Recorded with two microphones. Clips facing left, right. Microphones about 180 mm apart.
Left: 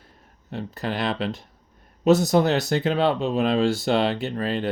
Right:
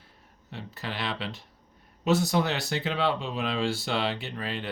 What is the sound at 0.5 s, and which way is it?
Speech, 45° left (ahead or behind).